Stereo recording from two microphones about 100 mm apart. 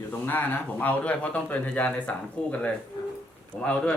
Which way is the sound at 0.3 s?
15° left (ahead or behind).